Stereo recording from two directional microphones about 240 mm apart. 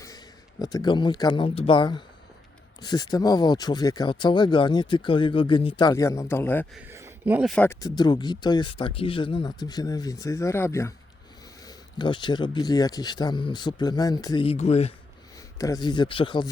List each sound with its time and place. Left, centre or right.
0.6 s speech: centre
6.7 s speech: centre; by 14.9 s left
15.5 s speech: centre